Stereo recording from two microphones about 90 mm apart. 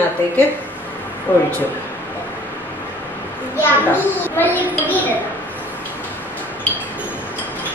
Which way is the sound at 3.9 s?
20° left (ahead or behind).